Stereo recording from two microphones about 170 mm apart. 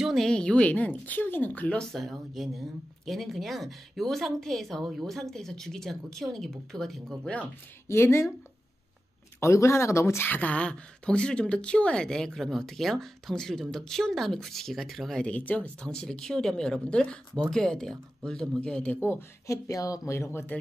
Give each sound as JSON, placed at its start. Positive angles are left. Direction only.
{"t": 0.0, "sound": "speech", "side_deg": 0}
{"t": 7.9, "sound": "speech", "side_deg": 15}
{"t": 9.4, "sound": "speech", "side_deg": 15}
{"t": 19.0, "sound": "speech", "side_deg": 15}